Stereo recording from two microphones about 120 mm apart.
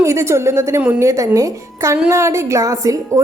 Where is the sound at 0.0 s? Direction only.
25° right (ahead or behind).